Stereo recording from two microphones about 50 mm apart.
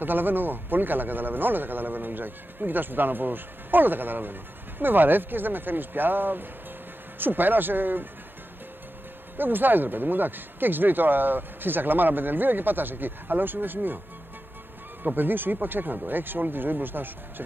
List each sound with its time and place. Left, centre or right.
0.0 s a man's voice: right
9.4 s a man's voice: right
15.0 s a man's voice: right